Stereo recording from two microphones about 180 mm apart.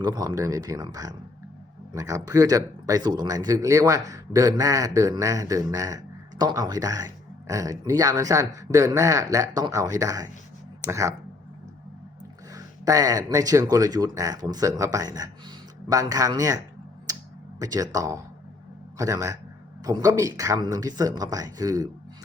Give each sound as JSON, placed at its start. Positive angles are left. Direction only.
{"t": 0.0, "sound": "speech", "side_deg": -20}
{"t": 12.5, "sound": "speech", "side_deg": -20}
{"t": 17.6, "sound": "speech", "side_deg": -20}